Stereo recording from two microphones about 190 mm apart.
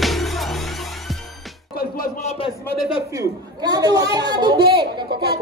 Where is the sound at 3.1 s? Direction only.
20° right (ahead or behind).